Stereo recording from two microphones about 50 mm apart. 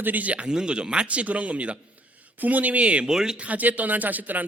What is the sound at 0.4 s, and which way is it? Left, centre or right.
A man's voice, centre.